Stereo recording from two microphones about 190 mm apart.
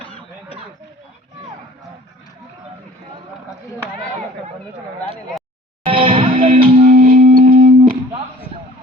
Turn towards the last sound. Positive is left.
turn(degrees=-35)  # may be behind; listen again after turning